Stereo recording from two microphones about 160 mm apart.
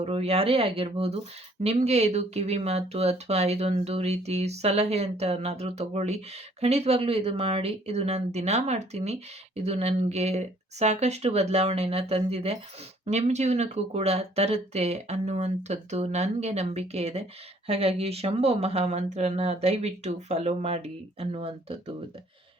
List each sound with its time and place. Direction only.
0.0 s speech: 40° right (ahead or behind)